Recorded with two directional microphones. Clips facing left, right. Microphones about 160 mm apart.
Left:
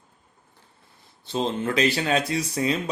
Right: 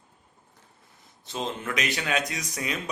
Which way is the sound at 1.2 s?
30° left (ahead or behind).